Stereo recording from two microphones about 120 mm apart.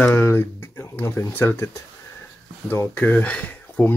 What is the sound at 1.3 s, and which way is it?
Speech, 15° left (ahead or behind).